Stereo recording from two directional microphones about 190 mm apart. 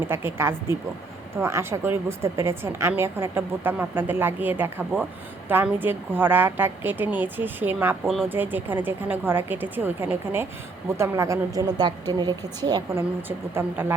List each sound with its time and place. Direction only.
0.0 s a woman's voice: 10° right (ahead or behind)
8.0 s speech: centre (ahead or behind)
8.3 s a woman's voice: 10° right (ahead or behind)
13.2 s a woman's voice: 10° right (ahead or behind)